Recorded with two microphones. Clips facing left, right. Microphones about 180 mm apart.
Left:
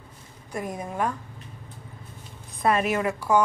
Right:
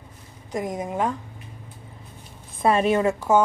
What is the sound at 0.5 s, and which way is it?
Speech, 15° right (ahead or behind).